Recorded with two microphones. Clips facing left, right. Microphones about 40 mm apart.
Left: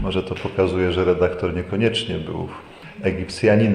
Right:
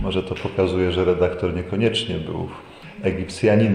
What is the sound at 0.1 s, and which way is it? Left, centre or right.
Speech, right.